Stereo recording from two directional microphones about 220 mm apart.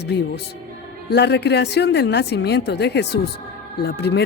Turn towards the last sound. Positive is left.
turn(degrees=50)  # may be behind; listen again after turning